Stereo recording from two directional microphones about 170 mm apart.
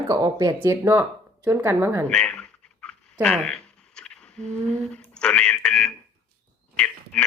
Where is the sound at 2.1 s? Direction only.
5° left (ahead or behind).